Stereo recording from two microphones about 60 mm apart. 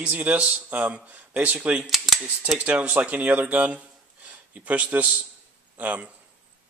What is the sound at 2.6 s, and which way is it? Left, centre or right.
A man's voice, right.